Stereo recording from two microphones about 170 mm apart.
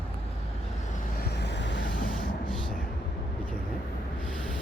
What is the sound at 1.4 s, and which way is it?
Vehicle, 90° left.